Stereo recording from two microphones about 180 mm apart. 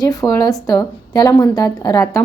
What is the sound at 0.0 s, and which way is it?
A woman's voice, 20° left (ahead or behind).